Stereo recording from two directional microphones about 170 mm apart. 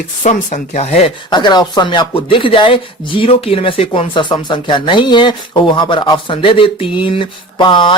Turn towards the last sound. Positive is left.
turn(degrees=30)  # may be behind; listen again after turning